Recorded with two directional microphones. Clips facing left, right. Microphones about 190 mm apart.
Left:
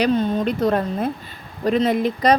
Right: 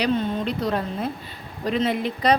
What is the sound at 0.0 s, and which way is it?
Speech, 50° left (ahead or behind).